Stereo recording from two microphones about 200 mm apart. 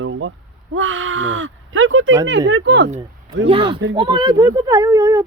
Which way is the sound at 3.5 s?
25° right (ahead or behind).